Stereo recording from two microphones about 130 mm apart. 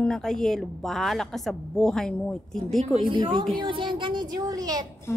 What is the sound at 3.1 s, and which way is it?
A woman's voice, 40° right (ahead or behind).